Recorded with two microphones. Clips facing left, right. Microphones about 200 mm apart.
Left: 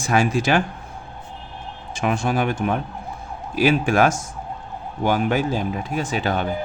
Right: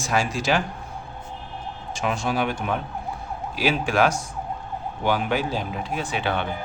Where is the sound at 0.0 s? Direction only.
55° left (ahead or behind).